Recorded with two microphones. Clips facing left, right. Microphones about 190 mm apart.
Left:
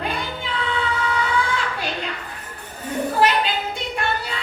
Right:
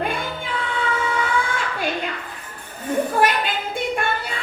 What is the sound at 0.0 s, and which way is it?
Child singing, 50° right (ahead or behind).